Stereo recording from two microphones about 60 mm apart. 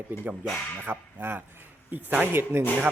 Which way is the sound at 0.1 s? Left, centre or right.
Right.